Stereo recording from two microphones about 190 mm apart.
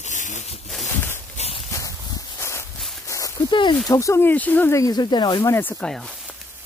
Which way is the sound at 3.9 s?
15° left (ahead or behind).